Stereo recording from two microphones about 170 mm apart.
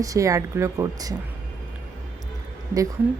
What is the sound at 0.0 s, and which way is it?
A woman's voice, 20° right (ahead or behind).